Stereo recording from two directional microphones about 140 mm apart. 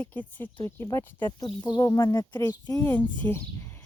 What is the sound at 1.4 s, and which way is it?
Speech, 35° left (ahead or behind).